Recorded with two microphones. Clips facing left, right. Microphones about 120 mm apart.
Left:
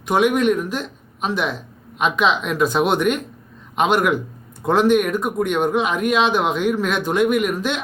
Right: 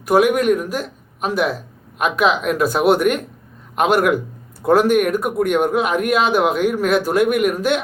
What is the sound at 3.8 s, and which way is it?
Speech, 45° right (ahead or behind).